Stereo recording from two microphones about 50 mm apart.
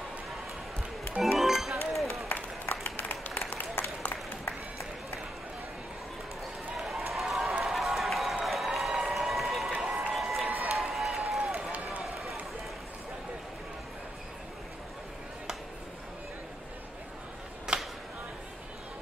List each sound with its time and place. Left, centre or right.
1.2 s music: centre
2.3 s applause: left
6.8 s run: centre
8.5 s applause: centre
9.0 s run: centre
9.7 s run: centre
10.1 s a sound: centre
11.1 s run: centre
17.7 s a sound: centre